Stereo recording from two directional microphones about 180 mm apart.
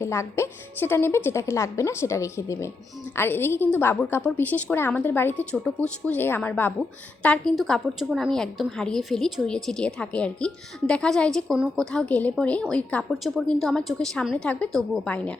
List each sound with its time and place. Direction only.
0.0 s a woman's voice: 15° left (ahead or behind)